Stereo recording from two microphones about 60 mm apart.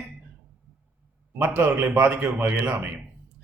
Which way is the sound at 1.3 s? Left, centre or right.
Right.